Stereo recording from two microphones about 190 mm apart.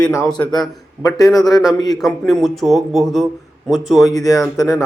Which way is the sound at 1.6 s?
Centre (ahead or behind).